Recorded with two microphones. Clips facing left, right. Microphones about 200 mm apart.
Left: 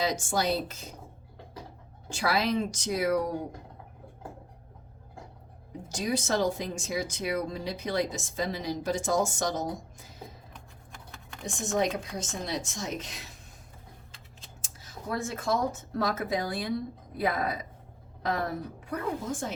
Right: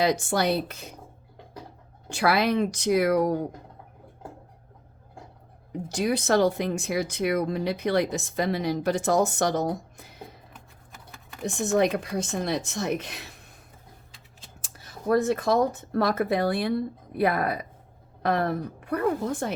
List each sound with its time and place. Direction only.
0.0 s speech: 65° right (ahead or behind)
2.0 s speech: 65° right (ahead or behind)
5.9 s speech: 65° right (ahead or behind)
10.5 s typing: centre (ahead or behind)
11.4 s speech: 60° right (ahead or behind)
14.6 s speech: 60° right (ahead or behind)